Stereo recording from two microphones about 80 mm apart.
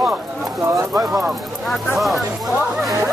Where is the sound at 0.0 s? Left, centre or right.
Centre.